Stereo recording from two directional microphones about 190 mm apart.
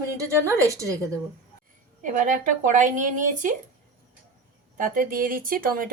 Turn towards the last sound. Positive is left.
turn(degrees=-45)  # may be behind; listen again after turning